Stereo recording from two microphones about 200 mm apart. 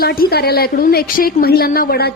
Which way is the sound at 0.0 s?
50° left (ahead or behind).